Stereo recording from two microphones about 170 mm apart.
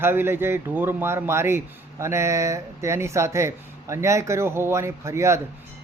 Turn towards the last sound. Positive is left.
turn(degrees=-15)  # may be behind; listen again after turning